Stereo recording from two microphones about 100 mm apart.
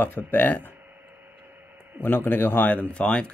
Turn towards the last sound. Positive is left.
turn(degrees=10)  # may be behind; listen again after turning